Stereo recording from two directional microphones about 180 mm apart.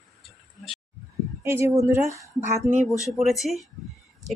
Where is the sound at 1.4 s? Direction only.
15° right (ahead or behind).